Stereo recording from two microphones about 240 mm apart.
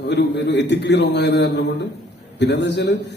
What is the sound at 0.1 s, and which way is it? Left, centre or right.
A man's voice, left.